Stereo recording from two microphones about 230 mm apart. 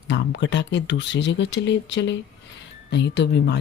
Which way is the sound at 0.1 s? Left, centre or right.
Left.